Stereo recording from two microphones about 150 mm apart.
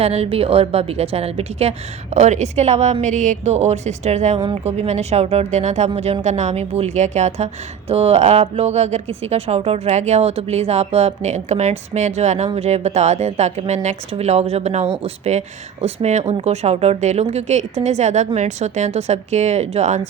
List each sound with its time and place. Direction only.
0.0 s a woman's voice: 45° right (ahead or behind)